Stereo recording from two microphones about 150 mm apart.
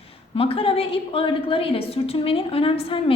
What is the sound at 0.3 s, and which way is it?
A woman's voice, 40° left (ahead or behind).